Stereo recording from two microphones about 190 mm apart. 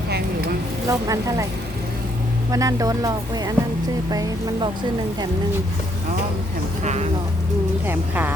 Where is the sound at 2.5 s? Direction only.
15° right (ahead or behind).